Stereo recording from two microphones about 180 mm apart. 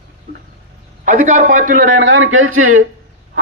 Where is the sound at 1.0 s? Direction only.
45° right (ahead or behind).